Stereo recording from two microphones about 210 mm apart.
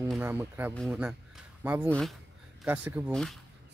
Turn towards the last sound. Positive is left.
turn(degrees=-10)  # may be behind; listen again after turning